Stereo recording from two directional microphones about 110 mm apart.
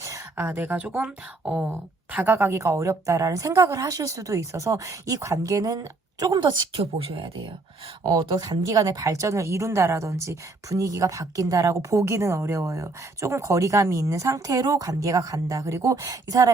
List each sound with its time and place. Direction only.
0.0 s speech: 25° right (ahead or behind)